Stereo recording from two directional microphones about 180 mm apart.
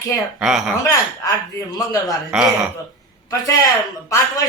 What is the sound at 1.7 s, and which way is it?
Speech, 20° left (ahead or behind).